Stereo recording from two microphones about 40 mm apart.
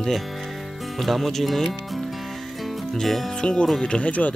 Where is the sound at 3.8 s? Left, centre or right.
Left.